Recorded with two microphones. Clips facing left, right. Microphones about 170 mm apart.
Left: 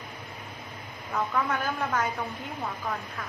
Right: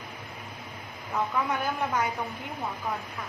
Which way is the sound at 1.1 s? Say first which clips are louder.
Even; 15° right (ahead or behind).